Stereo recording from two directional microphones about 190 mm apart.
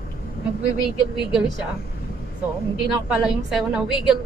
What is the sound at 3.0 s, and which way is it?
A woman's voice, 5° right (ahead or behind).